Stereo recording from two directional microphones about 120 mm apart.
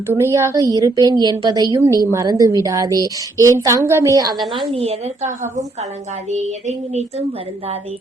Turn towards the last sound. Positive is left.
turn(degrees=-65)  # may be behind; listen again after turning